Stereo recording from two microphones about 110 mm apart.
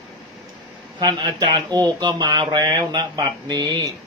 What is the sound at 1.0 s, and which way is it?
Speech, 40° right (ahead or behind).